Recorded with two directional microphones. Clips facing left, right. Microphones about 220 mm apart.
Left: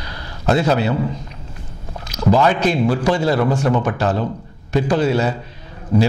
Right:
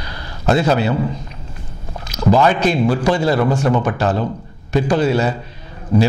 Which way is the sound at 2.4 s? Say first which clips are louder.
Right 2 dB; 15° right (ahead or behind).